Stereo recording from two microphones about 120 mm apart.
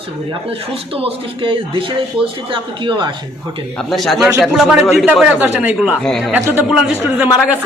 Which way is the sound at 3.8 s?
Centre (ahead or behind).